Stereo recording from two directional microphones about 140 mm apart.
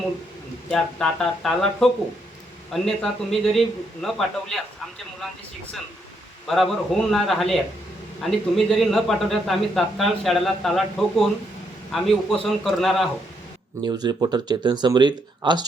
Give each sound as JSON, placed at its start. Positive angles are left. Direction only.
{"t": 0.7, "sound": "a man's voice", "side_deg": 5}
{"t": 6.5, "sound": "a man's voice", "side_deg": 0}
{"t": 13.8, "sound": "speech", "side_deg": -30}